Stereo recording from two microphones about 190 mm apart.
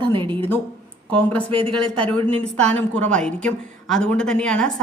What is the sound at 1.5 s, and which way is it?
Speech, 25° right (ahead or behind).